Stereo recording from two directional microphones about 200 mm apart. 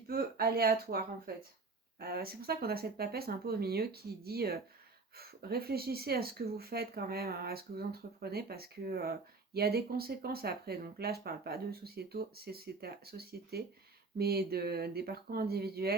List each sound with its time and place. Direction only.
0.1 s speech: 50° right (ahead or behind)